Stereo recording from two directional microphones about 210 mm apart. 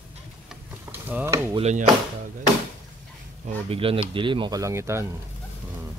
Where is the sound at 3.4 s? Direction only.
25° right (ahead or behind).